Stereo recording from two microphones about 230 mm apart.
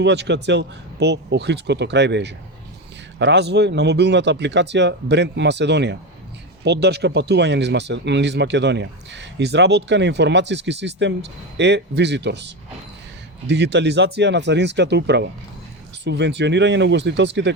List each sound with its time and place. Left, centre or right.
0.0 s speech: right
13.5 s speech: right